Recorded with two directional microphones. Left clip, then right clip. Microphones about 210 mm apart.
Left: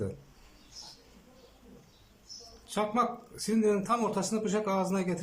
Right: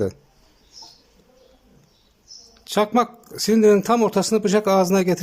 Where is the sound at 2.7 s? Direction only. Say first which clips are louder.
Right 10 dB; 45° right (ahead or behind).